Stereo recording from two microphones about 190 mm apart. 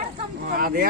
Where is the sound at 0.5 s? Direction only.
50° right (ahead or behind).